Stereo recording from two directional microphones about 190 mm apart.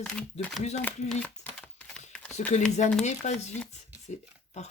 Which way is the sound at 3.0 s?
35° left (ahead or behind).